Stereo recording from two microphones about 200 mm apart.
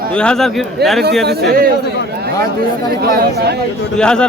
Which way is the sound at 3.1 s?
50° right (ahead or behind).